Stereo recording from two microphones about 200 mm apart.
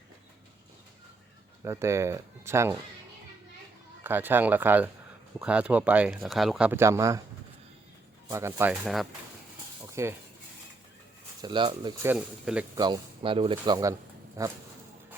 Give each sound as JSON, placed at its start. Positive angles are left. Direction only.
{"t": 1.6, "sound": "speech", "side_deg": -15}
{"t": 4.0, "sound": "speech", "side_deg": -10}
{"t": 8.3, "sound": "speech", "side_deg": -15}
{"t": 8.8, "sound": "speech", "side_deg": 0}
{"t": 9.9, "sound": "speech", "side_deg": -15}
{"t": 11.4, "sound": "speech", "side_deg": -20}
{"t": 12.1, "sound": "speech", "side_deg": -5}
{"t": 12.7, "sound": "speech", "side_deg": -20}